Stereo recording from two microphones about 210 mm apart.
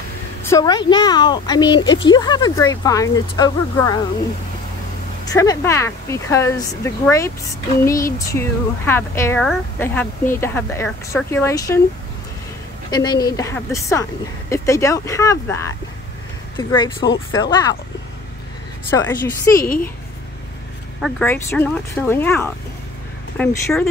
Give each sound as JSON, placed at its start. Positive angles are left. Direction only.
{"t": 0.4, "sound": "speech", "side_deg": 15}
{"t": 5.2, "sound": "speech", "side_deg": 15}
{"t": 12.9, "sound": "speech", "side_deg": 20}
{"t": 18.9, "sound": "speech", "side_deg": 10}
{"t": 19.6, "sound": "a woman's voice", "side_deg": 45}
{"t": 21.0, "sound": "speech", "side_deg": 10}